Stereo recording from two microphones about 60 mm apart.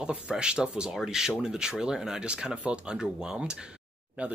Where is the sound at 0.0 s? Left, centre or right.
Centre.